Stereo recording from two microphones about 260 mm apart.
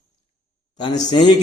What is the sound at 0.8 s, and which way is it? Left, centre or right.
Speech, centre.